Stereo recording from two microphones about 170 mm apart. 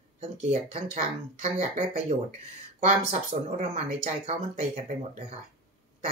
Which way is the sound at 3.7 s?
40° right (ahead or behind).